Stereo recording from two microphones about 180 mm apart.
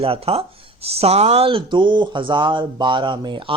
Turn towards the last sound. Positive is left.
turn(degrees=-25)  # may be behind; listen again after turning